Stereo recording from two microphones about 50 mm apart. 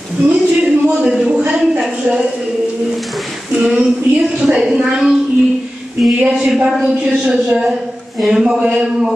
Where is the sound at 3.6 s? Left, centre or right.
Right.